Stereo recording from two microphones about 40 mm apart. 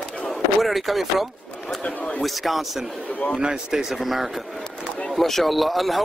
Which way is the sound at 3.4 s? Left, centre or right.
Centre.